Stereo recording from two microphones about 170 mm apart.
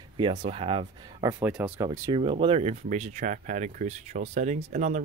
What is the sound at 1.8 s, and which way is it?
Speech, 20° right (ahead or behind).